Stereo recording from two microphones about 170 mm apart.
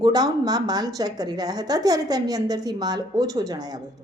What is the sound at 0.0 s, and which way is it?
A woman's voice, 25° right (ahead or behind).